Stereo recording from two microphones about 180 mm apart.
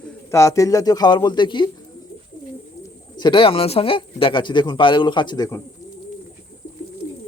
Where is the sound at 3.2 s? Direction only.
25° left (ahead or behind).